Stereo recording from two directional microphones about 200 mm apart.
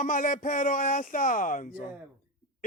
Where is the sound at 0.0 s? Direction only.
40° left (ahead or behind).